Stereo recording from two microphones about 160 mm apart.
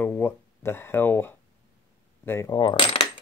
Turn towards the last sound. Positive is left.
turn(degrees=30)  # may be behind; listen again after turning